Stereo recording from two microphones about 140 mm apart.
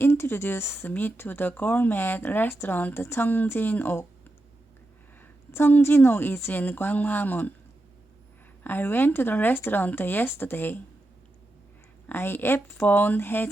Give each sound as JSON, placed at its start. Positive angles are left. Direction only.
{"t": 0.0, "sound": "speech", "side_deg": 15}
{"t": 5.5, "sound": "speech", "side_deg": 15}
{"t": 8.6, "sound": "speech", "side_deg": 15}
{"t": 12.0, "sound": "speech", "side_deg": 15}